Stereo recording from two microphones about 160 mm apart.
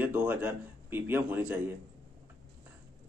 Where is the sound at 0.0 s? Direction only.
10° right (ahead or behind).